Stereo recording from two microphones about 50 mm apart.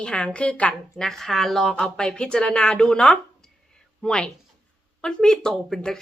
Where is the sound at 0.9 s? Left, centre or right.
Centre.